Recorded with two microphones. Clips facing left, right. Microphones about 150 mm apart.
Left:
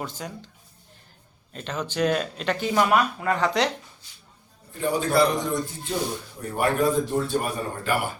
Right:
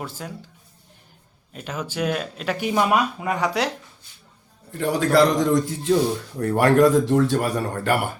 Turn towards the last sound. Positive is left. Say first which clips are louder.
# right 5 dB
turn(degrees=-90)